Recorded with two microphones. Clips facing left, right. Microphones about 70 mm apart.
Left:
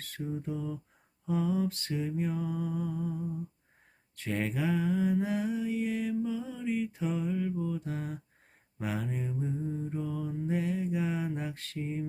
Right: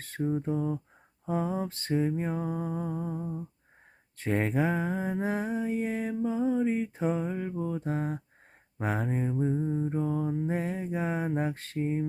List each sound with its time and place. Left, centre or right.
0.0 s mantra: right